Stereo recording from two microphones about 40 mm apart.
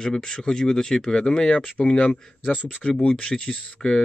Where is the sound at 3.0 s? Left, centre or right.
Left.